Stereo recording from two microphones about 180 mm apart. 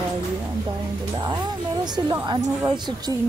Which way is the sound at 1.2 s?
25° right (ahead or behind).